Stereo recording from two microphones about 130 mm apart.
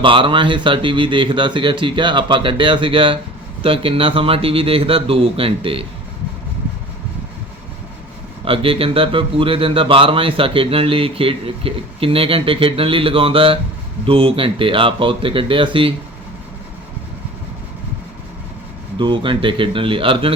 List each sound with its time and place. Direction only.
0.0 s speech: 40° right (ahead or behind)
8.4 s speech: 45° right (ahead or behind)
18.9 s speech: 35° right (ahead or behind)